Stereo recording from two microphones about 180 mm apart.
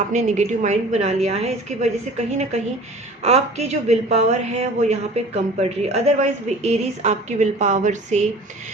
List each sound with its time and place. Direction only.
0.1 s a woman's voice: 40° right (ahead or behind)